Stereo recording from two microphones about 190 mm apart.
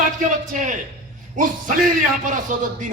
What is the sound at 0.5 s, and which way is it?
Speech, 40° right (ahead or behind).